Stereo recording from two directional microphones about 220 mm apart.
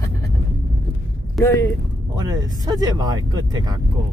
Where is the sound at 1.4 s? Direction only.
10° left (ahead or behind).